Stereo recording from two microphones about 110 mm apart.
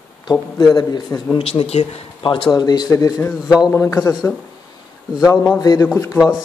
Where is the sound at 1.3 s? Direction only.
60° left (ahead or behind).